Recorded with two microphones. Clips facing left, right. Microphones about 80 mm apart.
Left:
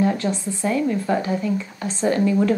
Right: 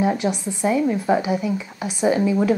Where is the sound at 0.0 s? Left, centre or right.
Centre.